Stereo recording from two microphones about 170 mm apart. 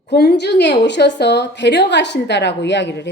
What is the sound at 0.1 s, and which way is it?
A woman's voice, 75° left (ahead or behind).